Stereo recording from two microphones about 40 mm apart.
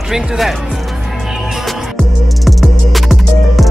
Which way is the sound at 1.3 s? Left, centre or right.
Centre.